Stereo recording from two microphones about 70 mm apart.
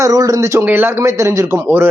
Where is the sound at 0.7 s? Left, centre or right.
Right.